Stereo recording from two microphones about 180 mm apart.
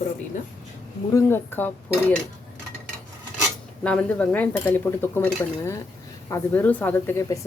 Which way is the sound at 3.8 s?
5° left (ahead or behind).